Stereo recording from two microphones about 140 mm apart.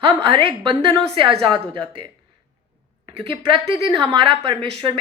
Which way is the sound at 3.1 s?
40° right (ahead or behind).